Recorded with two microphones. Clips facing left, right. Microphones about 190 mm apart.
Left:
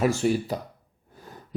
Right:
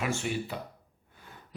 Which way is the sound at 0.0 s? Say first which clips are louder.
Left 9 dB; 40° left (ahead or behind).